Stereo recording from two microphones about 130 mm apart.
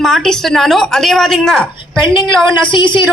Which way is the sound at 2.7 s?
35° left (ahead or behind).